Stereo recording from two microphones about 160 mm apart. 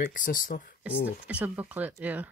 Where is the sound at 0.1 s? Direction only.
55° left (ahead or behind).